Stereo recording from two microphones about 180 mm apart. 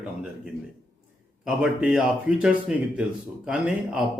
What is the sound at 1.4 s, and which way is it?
A man's voice, 5° right (ahead or behind).